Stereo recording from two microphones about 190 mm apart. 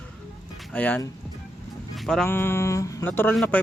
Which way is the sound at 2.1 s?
5° left (ahead or behind).